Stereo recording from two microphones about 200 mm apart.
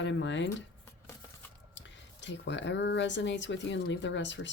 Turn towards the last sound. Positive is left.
turn(degrees=65)  # may be behind; listen again after turning